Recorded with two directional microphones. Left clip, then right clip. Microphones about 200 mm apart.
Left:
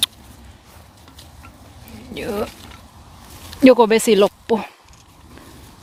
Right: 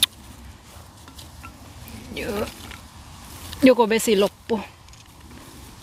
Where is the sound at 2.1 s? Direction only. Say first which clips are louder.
Left 3 dB; 20° left (ahead or behind).